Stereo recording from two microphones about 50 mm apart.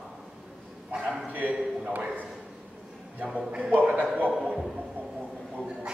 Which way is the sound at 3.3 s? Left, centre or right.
Right.